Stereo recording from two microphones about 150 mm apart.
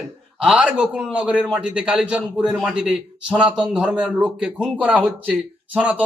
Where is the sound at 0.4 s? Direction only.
5° right (ahead or behind).